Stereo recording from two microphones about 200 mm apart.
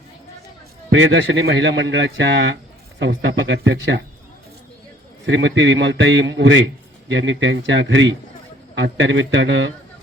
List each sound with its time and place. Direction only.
0.9 s a man's voice: 70° right (ahead or behind)
5.2 s a man's voice: 65° right (ahead or behind)